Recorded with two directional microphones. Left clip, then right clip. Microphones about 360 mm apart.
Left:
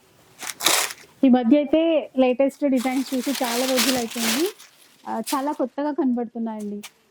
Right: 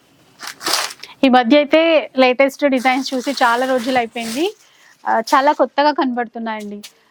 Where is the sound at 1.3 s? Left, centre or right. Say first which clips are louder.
Right 9 dB; right.